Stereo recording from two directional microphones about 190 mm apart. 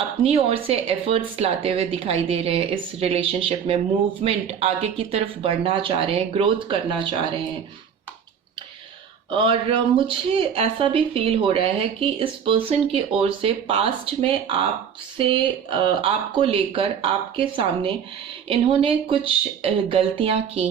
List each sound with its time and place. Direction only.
0.2 s speech: 30° right (ahead or behind)
9.3 s speech: 25° right (ahead or behind)